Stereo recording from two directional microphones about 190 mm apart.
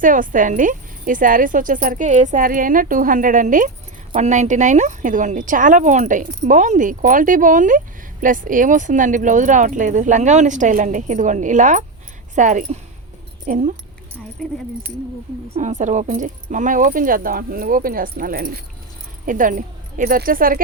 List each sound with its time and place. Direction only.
0.0 s speech: 45° right (ahead or behind)
14.4 s speech: 5° left (ahead or behind)
15.5 s speech: 40° right (ahead or behind)